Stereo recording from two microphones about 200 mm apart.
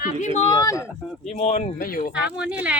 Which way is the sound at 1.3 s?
30° left (ahead or behind).